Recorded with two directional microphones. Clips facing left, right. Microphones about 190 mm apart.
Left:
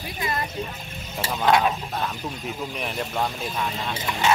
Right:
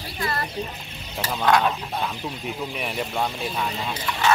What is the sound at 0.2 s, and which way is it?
Speech, 15° left (ahead or behind).